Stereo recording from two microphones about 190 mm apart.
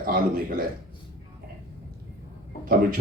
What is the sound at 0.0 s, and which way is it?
Speech, 50° right (ahead or behind).